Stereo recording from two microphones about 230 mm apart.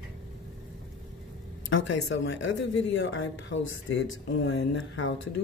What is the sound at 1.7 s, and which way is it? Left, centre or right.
Speech, left.